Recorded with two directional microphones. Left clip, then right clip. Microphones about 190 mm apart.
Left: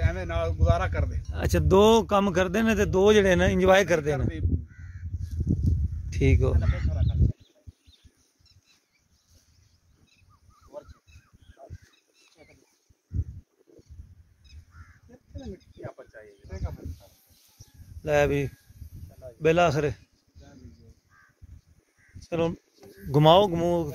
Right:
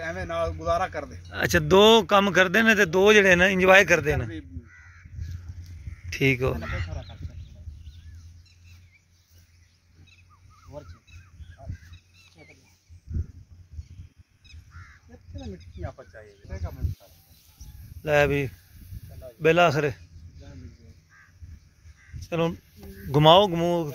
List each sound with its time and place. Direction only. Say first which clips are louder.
0.0 s a sound: right 1 dB; 30° left (ahead or behind)
0.7 s speech: right 2 dB; 35° left (ahead or behind)
1.3 s a man's voice: right 3 dB; 5° left (ahead or behind)
4.7 s crow: right 4 dB; 50° left (ahead or behind)
6.0 s speech: right 3 dB; 10° left (ahead or behind)
6.6 s a man's voice: right 3 dB; 15° left (ahead or behind)
15.8 s speech: right 1 dB; 25° left (ahead or behind)
18.0 s speech: right 2 dB; 5° left (ahead or behind)
19.1 s snake: right 2 dB; centre (ahead or behind)
22.2 s a sound: right 1 dB; 15° left (ahead or behind)
23.1 s a man's voice: right 2 dB; 15° left (ahead or behind)